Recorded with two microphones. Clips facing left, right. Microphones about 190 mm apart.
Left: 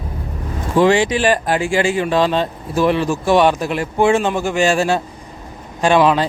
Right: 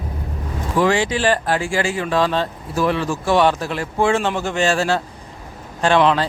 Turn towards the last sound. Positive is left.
turn(degrees=15)  # may be behind; listen again after turning